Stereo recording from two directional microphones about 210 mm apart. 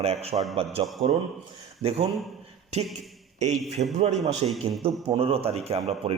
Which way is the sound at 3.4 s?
35° right (ahead or behind).